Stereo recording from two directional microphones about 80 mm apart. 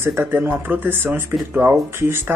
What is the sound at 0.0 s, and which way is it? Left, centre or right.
Speech, right.